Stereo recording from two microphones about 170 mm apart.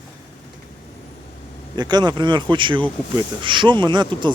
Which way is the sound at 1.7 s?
25° right (ahead or behind).